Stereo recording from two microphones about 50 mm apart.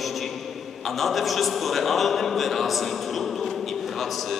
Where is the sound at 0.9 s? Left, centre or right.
Centre.